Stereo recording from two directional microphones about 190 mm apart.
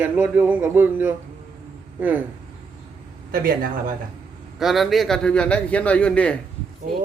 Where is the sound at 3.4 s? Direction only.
50° right (ahead or behind).